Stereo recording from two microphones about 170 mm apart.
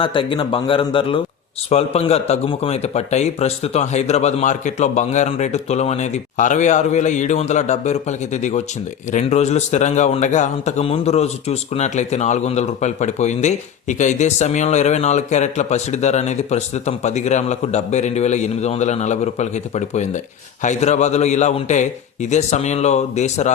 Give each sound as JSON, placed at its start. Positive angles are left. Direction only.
{"t": 0.0, "sound": "a man's voice", "side_deg": 30}